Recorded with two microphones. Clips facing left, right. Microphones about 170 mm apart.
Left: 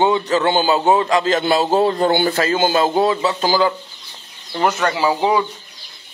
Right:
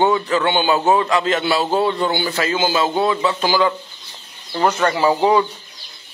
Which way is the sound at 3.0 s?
30° left (ahead or behind).